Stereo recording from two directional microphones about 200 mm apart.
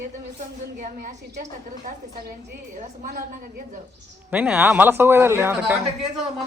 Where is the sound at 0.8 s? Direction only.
40° right (ahead or behind).